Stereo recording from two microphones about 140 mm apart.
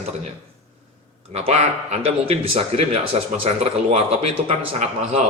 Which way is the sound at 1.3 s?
50° right (ahead or behind).